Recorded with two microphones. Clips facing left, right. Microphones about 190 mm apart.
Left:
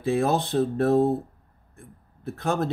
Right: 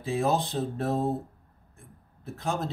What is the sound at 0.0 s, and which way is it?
Speech, 60° left (ahead or behind).